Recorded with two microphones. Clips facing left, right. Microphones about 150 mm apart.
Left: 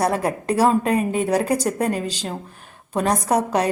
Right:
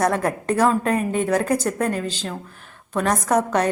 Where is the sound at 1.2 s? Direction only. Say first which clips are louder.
Even; 35° left (ahead or behind).